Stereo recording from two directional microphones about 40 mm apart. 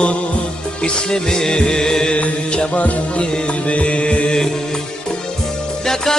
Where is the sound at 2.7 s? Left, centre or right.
Left.